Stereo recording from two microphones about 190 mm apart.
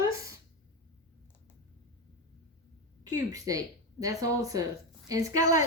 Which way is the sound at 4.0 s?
20° right (ahead or behind).